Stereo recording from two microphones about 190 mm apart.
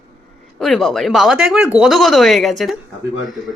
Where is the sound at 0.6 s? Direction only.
Centre (ahead or behind).